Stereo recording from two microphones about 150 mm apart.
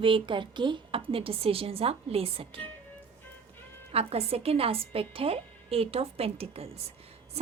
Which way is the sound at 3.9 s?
40° right (ahead or behind).